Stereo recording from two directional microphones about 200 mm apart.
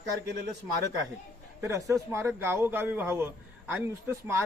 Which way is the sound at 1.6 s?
15° right (ahead or behind).